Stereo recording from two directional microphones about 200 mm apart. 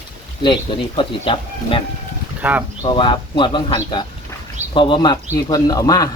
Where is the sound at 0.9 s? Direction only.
25° left (ahead or behind).